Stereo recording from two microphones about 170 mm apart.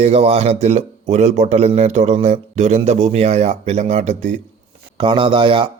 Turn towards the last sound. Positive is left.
turn(degrees=-30)  # may be behind; listen again after turning